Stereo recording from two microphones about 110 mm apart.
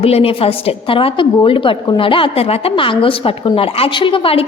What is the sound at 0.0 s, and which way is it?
A woman's voice, 65° left (ahead or behind).